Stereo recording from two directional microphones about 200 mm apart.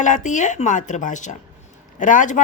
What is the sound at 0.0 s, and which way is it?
Speech, 40° left (ahead or behind).